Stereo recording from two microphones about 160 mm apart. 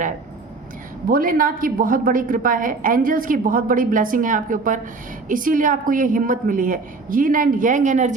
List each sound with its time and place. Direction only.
1.0 s a woman's voice: 60° right (ahead or behind)